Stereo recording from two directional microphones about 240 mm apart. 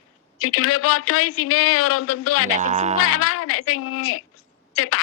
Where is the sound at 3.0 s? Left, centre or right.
Left.